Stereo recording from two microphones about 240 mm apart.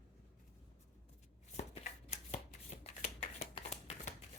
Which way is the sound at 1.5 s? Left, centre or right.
Left.